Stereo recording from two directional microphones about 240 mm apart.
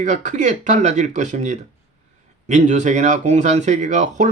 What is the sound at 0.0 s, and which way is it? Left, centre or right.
Speech, right.